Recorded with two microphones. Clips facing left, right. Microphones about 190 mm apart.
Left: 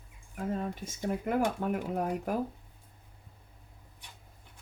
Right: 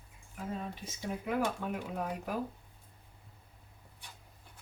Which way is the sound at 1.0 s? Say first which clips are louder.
Left 4 dB; 50° left (ahead or behind).